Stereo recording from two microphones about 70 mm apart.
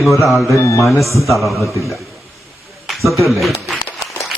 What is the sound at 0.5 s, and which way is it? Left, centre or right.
Mantra, left.